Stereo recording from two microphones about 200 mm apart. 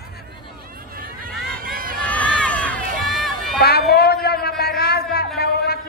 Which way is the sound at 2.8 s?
45° right (ahead or behind).